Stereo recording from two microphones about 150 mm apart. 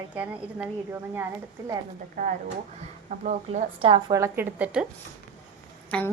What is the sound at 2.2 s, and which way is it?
Speech, 60° right (ahead or behind).